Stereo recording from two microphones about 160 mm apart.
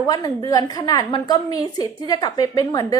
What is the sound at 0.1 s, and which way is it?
A woman's voice, 25° left (ahead or behind).